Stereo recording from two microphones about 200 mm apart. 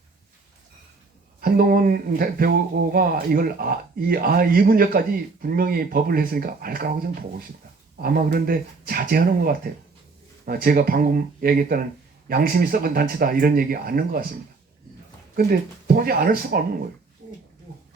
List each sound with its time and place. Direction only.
1.4 s speech: 50° right (ahead or behind)
15.9 s speech: 50° right (ahead or behind)
17.2 s a sound: 35° right (ahead or behind)